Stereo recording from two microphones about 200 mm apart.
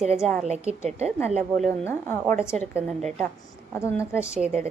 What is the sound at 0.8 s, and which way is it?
Speech, 30° right (ahead or behind).